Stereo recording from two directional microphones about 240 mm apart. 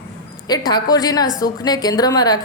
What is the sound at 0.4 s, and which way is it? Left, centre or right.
Speech, centre.